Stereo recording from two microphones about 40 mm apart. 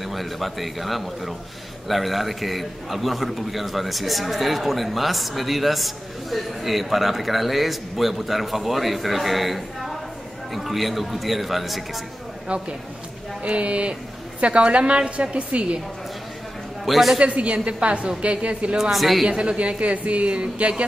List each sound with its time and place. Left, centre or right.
0.0 s a man's voice: centre
12.4 s a woman's voice: right
16.8 s a man's voice: centre
17.2 s a woman's voice: right
18.8 s a man's voice: centre
19.2 s speech: right